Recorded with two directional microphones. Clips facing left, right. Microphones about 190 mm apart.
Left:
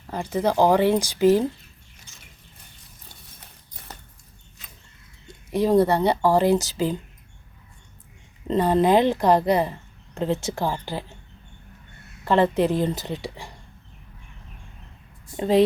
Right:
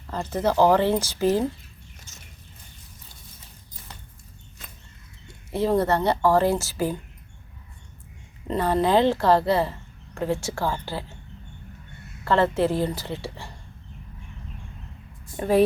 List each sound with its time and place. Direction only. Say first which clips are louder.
0.1 s speech: left 1 dB; 15° left (ahead or behind)
2.1 s a sound: right 1 dB; 45° right (ahead or behind)
3.8 s a sound: left 3 dB; 60° left (ahead or behind)
5.5 s speech: left 3 dB; 15° left (ahead or behind)
8.4 s speech: left 3 dB; 15° left (ahead or behind)
12.2 s speech: left 2 dB; 15° left (ahead or behind)
15.4 s a woman's voice: left 1 dB; 20° left (ahead or behind)